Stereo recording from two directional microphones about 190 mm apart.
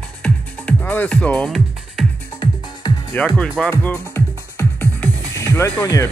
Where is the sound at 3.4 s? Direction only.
5° left (ahead or behind).